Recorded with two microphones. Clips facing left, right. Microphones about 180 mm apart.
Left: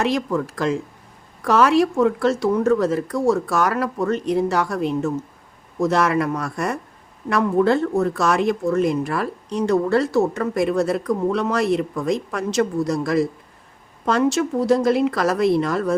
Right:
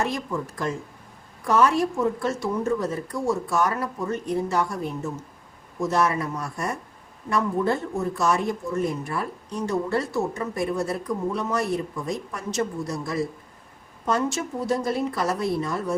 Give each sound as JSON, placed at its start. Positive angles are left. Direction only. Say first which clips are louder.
{"t": 0.3, "sound": "speech", "louder": "left 7 dB", "side_deg": 80}